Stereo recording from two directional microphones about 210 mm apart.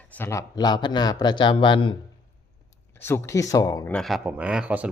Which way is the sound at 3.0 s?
10° left (ahead or behind).